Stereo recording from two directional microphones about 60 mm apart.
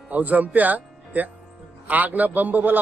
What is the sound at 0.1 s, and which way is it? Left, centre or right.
A man's voice, right.